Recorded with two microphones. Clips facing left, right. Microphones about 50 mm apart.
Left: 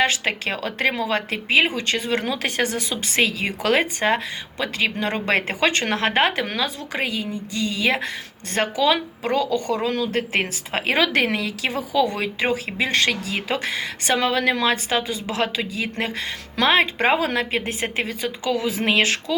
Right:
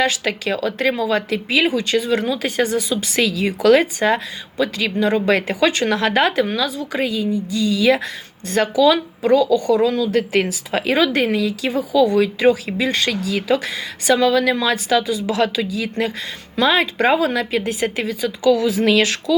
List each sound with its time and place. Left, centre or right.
0.0 s speech: left
12.1 s speech: left